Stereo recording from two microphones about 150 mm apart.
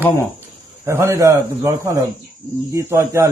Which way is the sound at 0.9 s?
20° right (ahead or behind).